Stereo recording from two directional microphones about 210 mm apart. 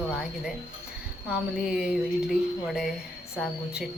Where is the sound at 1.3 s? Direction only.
5° right (ahead or behind).